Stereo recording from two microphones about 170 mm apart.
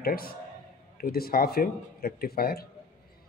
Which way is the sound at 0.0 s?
60° left (ahead or behind).